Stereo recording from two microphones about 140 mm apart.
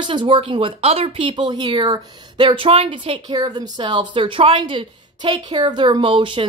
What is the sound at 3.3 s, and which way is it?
A woman's voice, 30° right (ahead or behind).